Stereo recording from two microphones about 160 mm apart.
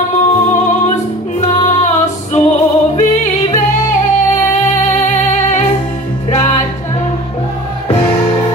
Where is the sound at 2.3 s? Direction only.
45° left (ahead or behind).